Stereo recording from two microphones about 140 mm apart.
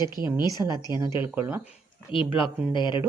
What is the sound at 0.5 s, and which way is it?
Speech, 25° right (ahead or behind).